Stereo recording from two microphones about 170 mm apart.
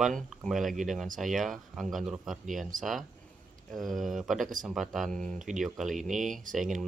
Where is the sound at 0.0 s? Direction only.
Centre (ahead or behind).